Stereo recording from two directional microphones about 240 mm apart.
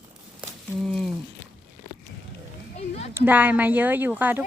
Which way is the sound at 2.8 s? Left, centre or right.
Left.